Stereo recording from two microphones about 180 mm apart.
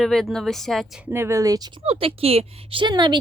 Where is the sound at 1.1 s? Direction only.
15° right (ahead or behind).